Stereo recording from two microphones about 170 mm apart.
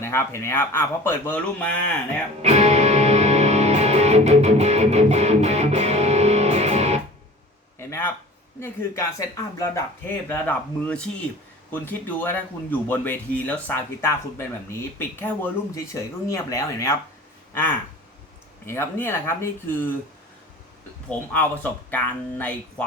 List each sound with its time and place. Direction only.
0.0 s speech: 15° left (ahead or behind)
2.4 s music: 40° right (ahead or behind)
7.8 s a sound: 15° left (ahead or behind)
8.6 s speech: 15° left (ahead or behind)
21.1 s speech: 10° left (ahead or behind)